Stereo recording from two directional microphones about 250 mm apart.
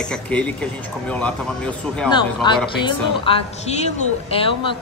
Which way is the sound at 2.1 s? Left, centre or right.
Centre.